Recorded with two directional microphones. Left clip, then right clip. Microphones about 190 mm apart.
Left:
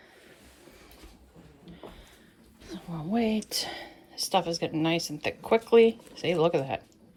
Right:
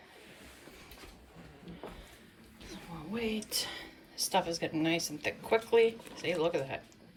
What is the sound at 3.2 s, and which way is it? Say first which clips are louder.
Speech: left 3 dB; 10° left (ahead or behind).